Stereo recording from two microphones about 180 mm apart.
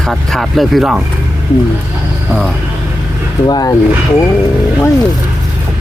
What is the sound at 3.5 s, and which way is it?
Speech, 20° left (ahead or behind).